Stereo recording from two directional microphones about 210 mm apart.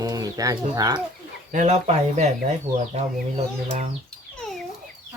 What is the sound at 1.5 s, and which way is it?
Speech, 35° right (ahead or behind).